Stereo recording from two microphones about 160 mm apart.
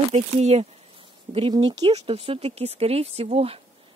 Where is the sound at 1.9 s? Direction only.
40° right (ahead or behind).